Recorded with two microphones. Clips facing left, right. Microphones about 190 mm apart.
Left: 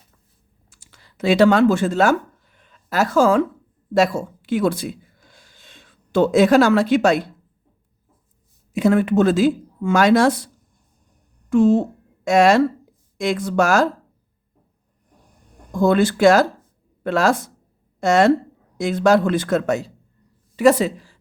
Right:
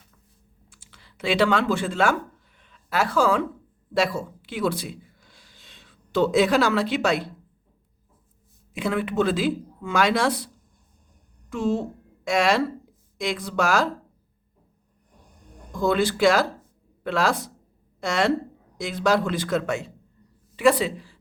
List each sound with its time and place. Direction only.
0.7 s speech: 45° left (ahead or behind)
2.6 s a sound: 40° left (ahead or behind)
3.9 s speech: 45° left (ahead or behind)
8.7 s a woman's voice: 45° left (ahead or behind)
15.8 s speech: 50° left (ahead or behind)